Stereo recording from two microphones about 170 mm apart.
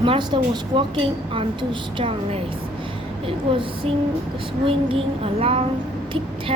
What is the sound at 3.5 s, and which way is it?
A woman's voice, 30° right (ahead or behind).